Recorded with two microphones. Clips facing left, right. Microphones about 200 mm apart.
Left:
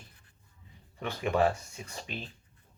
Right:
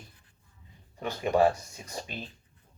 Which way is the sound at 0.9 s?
35° right (ahead or behind).